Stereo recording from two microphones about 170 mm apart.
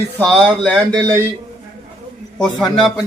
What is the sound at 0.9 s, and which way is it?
Speech, 20° right (ahead or behind).